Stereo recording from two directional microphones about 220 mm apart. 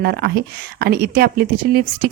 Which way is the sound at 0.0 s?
45° right (ahead or behind).